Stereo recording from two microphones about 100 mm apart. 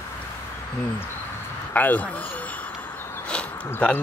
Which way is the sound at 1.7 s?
15° left (ahead or behind).